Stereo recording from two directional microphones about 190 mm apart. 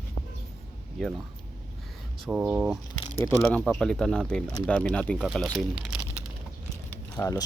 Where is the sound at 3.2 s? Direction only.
10° left (ahead or behind).